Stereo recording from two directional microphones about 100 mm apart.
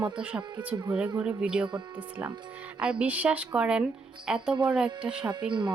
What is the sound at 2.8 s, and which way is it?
A woman's voice, 10° right (ahead or behind).